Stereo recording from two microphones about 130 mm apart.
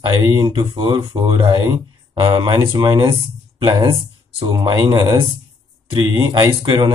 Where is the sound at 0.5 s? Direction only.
40° right (ahead or behind).